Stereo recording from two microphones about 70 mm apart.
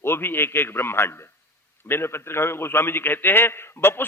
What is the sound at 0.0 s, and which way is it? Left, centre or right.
A man's voice, left.